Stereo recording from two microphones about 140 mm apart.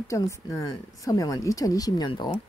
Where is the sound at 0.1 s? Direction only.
20° left (ahead or behind).